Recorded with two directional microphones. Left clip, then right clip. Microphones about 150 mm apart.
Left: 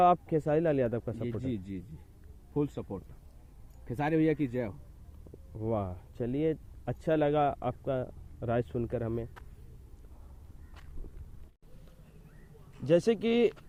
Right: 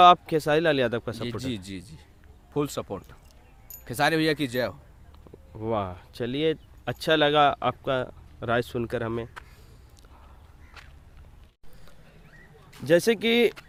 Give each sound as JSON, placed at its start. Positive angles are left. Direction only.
{"t": 0.0, "sound": "speech", "side_deg": -30}
{"t": 3.8, "sound": "speech", "side_deg": -35}
{"t": 10.8, "sound": "walk", "side_deg": 90}
{"t": 12.8, "sound": "speech", "side_deg": -30}